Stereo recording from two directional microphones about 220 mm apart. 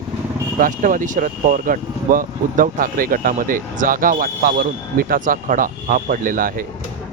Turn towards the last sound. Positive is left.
turn(degrees=-40)  # may be behind; listen again after turning